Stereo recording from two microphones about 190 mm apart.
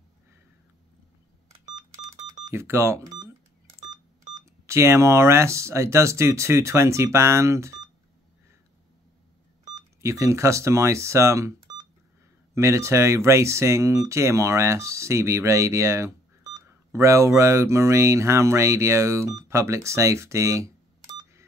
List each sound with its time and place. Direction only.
2.2 s a sound: 40° right (ahead or behind)
2.5 s speech: 15° right (ahead or behind)
3.9 s telephone dialing: 40° right (ahead or behind)
4.6 s speech: 15° right (ahead or behind)
10.0 s speech: 15° right (ahead or behind)
12.5 s speech: 15° right (ahead or behind)